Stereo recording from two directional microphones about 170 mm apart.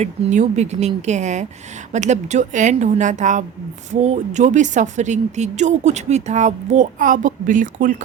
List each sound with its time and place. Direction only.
0.0 s a woman's voice: 45° right (ahead or behind)